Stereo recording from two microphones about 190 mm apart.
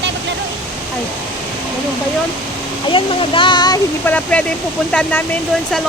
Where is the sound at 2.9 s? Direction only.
25° left (ahead or behind).